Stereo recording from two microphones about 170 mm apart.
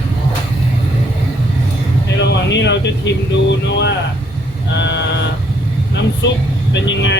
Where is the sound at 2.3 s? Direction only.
90° left.